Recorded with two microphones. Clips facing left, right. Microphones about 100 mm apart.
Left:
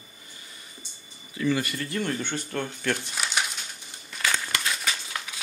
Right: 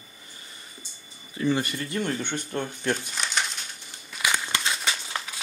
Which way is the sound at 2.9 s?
5° left (ahead or behind).